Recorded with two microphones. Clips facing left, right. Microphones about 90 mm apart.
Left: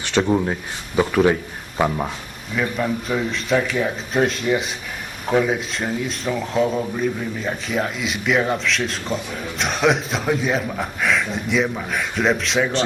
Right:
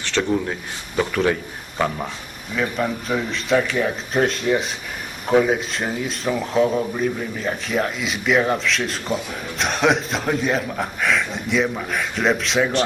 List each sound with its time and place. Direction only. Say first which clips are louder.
0.0 s speech: left 3 dB; 15° left (ahead or behind)
2.7 s speech: even; 5° right (ahead or behind)